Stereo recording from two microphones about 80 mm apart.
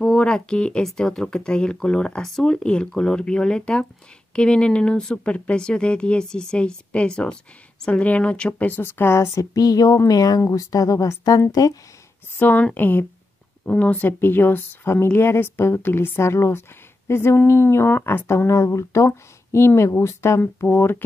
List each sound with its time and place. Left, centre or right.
0.0 s a woman's voice: centre; by 11.8 s left
12.4 s a woman's voice: left